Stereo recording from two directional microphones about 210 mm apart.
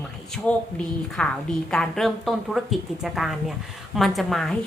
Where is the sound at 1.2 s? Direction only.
5° left (ahead or behind).